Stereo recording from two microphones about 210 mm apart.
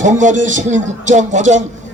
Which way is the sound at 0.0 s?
35° right (ahead or behind).